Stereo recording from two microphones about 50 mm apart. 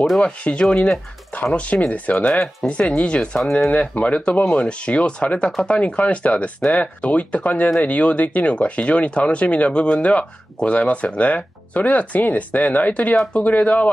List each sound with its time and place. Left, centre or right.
0.2 s speech: left
2.3 s speech: centre; by 13.8 s left